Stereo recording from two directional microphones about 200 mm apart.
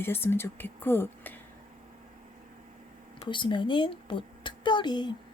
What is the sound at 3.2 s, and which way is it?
A woman's voice, 25° left (ahead or behind).